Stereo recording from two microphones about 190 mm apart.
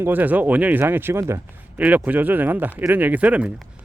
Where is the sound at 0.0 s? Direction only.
10° right (ahead or behind).